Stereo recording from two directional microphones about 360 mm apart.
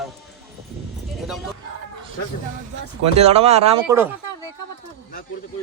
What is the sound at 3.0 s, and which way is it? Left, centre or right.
Speech, centre.